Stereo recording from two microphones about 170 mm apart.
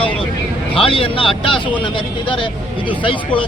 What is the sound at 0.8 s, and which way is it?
Speech, 30° left (ahead or behind).